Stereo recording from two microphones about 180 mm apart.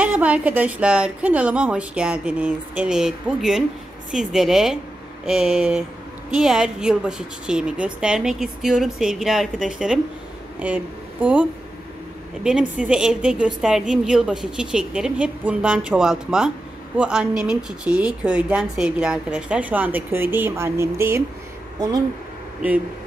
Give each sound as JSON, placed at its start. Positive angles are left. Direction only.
{"t": 0.0, "sound": "a woman's voice", "side_deg": -10}
{"t": 12.4, "sound": "a woman's voice", "side_deg": -5}
{"t": 22.6, "sound": "a woman's voice", "side_deg": -10}